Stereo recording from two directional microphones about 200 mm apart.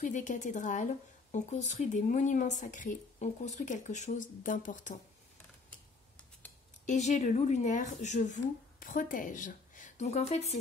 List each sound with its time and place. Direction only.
0.0 s speech: 40° left (ahead or behind)
6.9 s speech: 35° left (ahead or behind)